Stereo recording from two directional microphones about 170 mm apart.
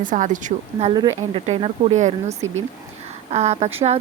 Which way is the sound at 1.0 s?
25° right (ahead or behind).